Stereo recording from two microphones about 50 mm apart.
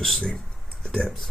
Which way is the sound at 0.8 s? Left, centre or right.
Centre.